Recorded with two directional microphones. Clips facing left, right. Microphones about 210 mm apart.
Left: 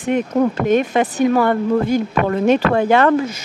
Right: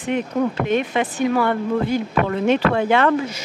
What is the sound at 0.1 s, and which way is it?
A woman's voice, 45° left (ahead or behind).